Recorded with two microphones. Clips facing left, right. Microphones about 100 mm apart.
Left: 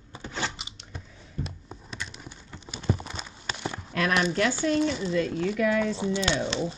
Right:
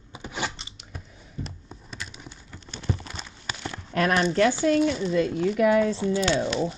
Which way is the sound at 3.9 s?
35° right (ahead or behind).